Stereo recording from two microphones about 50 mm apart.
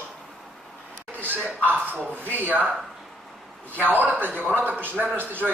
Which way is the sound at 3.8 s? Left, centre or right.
Right.